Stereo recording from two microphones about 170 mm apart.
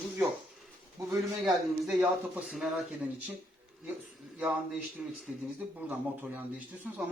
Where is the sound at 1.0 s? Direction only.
20° right (ahead or behind).